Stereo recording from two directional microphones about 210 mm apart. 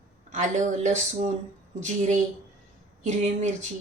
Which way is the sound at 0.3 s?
35° right (ahead or behind).